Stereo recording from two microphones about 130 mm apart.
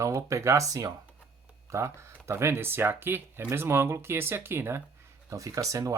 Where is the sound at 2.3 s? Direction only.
20° right (ahead or behind).